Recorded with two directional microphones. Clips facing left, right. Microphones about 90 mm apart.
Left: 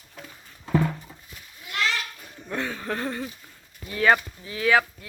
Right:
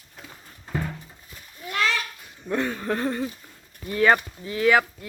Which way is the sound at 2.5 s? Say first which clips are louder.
Right 4 dB; 15° right (ahead or behind).